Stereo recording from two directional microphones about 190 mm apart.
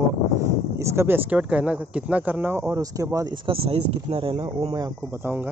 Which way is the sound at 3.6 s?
30° right (ahead or behind).